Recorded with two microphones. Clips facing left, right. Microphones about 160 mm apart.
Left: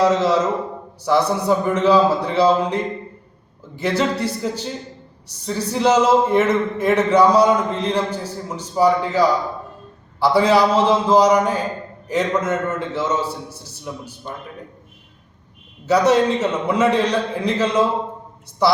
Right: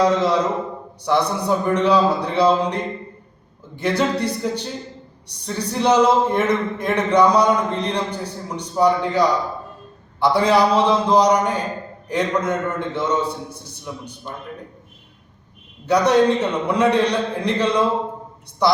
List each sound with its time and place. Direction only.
0.0 s a man's voice: 5° left (ahead or behind)
3.8 s a man's voice: 5° left (ahead or behind)
15.9 s a man's voice: 5° left (ahead or behind)